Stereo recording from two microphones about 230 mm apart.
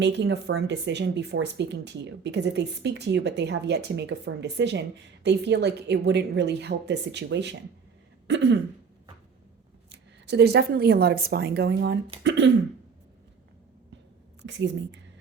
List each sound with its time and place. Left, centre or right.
0.0 s speech: right
9.9 s speech: right
14.4 s speech: right